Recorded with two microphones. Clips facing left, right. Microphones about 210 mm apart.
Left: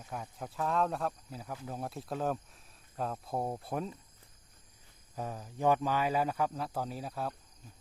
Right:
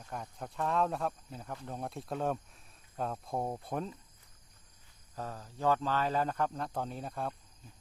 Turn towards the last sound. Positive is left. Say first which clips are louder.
# even
turn(degrees=5)  # may be behind; listen again after turning